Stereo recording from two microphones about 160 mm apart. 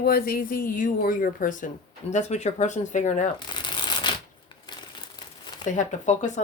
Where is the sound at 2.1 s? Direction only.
45° left (ahead or behind).